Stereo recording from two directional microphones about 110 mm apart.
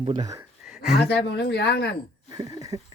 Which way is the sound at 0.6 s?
5° right (ahead or behind).